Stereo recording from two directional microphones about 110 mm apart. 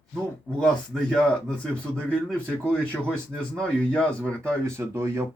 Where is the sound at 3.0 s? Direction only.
10° left (ahead or behind).